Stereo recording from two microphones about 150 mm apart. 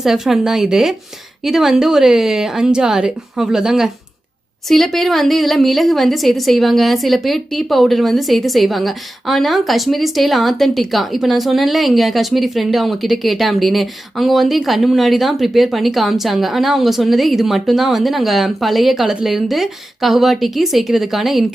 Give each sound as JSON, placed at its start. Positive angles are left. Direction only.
{"t": 0.0, "sound": "a woman's voice", "side_deg": -5}